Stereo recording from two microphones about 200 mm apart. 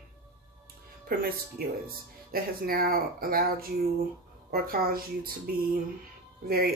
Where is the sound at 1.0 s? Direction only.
50° right (ahead or behind).